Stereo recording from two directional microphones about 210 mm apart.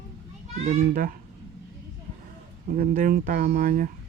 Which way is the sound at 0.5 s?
35° right (ahead or behind).